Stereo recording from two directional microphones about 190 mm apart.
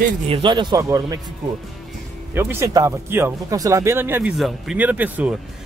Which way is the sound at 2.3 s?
10° right (ahead or behind).